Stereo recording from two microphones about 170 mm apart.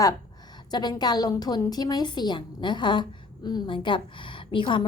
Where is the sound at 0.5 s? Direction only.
25° left (ahead or behind).